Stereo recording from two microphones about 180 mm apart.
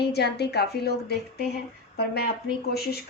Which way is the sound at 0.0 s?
65° left (ahead or behind).